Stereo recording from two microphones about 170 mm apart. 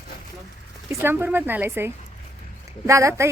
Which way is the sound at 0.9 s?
15° right (ahead or behind).